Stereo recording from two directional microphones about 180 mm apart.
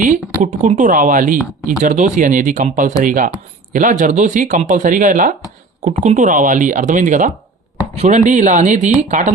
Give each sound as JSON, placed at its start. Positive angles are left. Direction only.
{"t": 0.6, "sound": "speech", "side_deg": -45}